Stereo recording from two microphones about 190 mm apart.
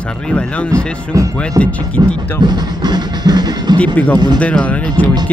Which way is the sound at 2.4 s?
20° right (ahead or behind).